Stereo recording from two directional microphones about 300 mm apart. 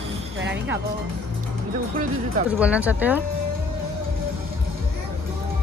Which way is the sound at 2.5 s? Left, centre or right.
Centre.